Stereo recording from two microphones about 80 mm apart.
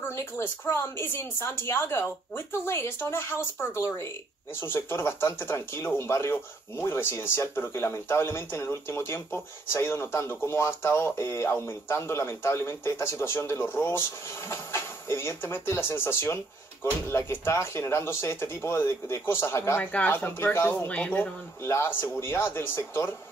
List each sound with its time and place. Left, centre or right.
0.0 s a woman's voice: left
19.8 s a woman's voice: centre
21.6 s speech: left